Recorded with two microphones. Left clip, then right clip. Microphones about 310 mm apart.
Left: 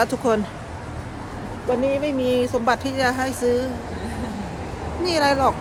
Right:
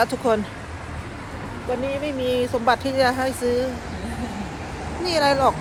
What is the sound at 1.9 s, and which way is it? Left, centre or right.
Speech, centre.